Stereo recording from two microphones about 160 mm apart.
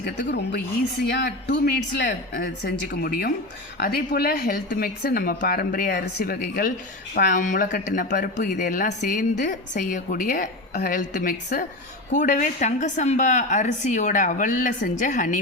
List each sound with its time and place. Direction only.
0.0 s a woman's voice: 90° left; by 15.4 s 55° left (ahead or behind)